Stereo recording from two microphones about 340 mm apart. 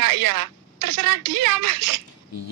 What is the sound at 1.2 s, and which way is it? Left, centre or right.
Speech, right.